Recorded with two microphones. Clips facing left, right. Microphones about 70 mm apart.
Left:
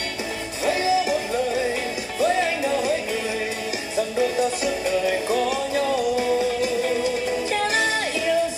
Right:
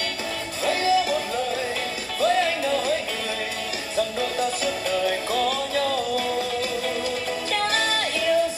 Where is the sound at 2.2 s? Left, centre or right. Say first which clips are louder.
Even; left.